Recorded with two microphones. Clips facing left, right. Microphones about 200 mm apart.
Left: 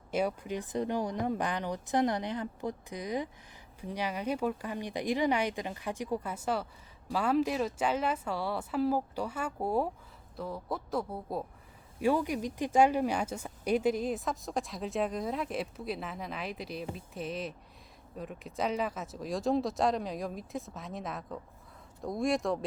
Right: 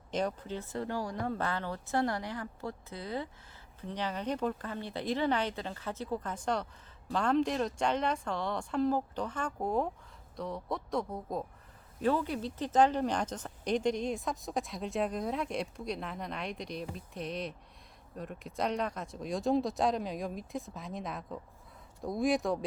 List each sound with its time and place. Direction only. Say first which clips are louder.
0.1 s speech: left 2 dB; 10° left (ahead or behind)